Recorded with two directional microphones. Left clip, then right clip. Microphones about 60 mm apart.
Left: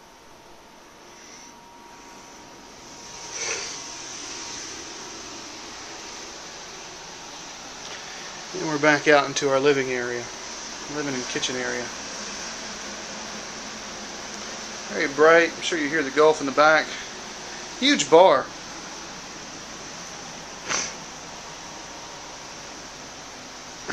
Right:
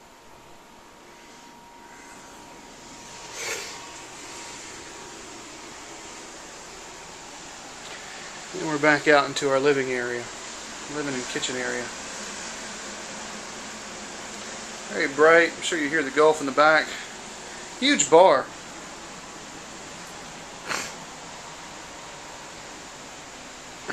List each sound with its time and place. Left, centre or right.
8.5 s speech: centre
10.8 s air conditioning: centre
17.8 s speech: centre
20.6 s a sound: centre